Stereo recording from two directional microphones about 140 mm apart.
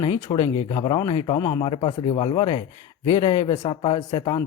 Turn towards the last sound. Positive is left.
turn(degrees=30)  # may be behind; listen again after turning